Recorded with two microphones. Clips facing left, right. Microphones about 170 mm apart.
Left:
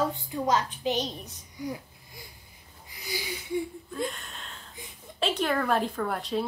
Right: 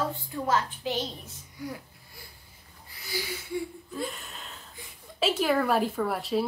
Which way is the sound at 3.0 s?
15° left (ahead or behind).